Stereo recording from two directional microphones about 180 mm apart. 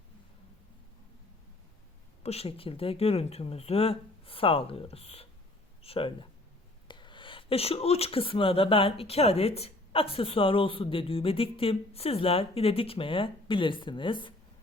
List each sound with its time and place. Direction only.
2.2 s speech: 35° left (ahead or behind)